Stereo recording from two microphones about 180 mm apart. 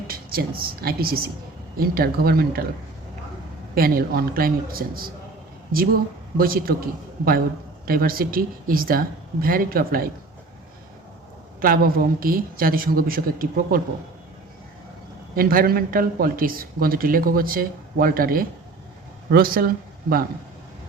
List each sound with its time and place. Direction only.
0.1 s a woman's voice: 55° right (ahead or behind)
3.8 s a man's voice: 55° right (ahead or behind)
6.3 s a man's voice: 55° right (ahead or behind)
7.9 s speech: 55° right (ahead or behind)
11.6 s speech: 55° right (ahead or behind)
15.4 s speech: 55° right (ahead or behind)